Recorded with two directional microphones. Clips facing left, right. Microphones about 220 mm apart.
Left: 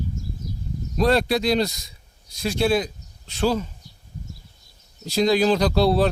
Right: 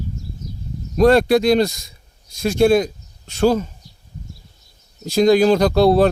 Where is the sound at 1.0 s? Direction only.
50° right (ahead or behind).